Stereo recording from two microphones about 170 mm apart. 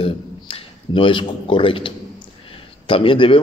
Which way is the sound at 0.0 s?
35° left (ahead or behind).